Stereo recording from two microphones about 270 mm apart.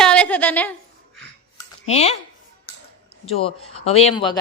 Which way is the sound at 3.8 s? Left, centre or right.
Left.